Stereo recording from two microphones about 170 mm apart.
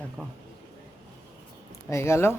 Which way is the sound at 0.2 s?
5° left (ahead or behind).